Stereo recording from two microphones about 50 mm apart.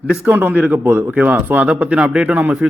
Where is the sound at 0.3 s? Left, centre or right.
Right.